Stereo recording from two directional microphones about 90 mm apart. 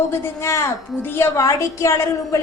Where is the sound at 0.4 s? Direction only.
30° left (ahead or behind).